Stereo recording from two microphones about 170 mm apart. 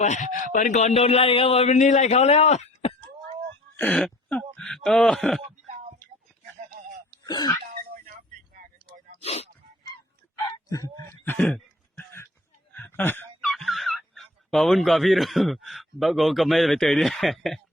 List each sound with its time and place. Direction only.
0.0 s speech: 45° left (ahead or behind)
3.8 s speech: 5° left (ahead or behind)
7.3 s music: 25° left (ahead or behind)
7.7 s dog: 60° right (ahead or behind)
9.2 s speech: 40° left (ahead or behind)
10.7 s speech: 20° left (ahead or behind)
11.3 s a sound: 5° left (ahead or behind)
13.4 s speech: centre (ahead or behind)